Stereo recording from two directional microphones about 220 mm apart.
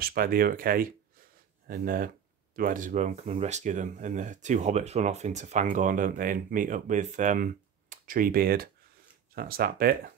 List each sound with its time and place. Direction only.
0.0 s speech: 40° right (ahead or behind)